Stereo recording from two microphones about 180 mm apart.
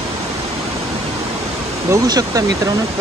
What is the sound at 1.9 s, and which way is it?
Speech, 20° right (ahead or behind).